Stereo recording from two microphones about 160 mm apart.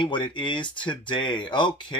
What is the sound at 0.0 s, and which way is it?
Speech, 30° left (ahead or behind).